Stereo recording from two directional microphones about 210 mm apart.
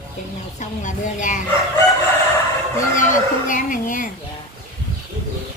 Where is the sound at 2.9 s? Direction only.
40° left (ahead or behind).